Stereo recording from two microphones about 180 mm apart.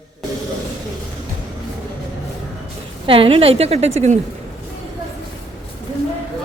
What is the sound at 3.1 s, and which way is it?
A woman's voice, 30° right (ahead or behind).